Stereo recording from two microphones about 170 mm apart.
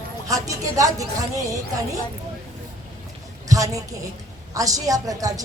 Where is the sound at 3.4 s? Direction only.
20° right (ahead or behind).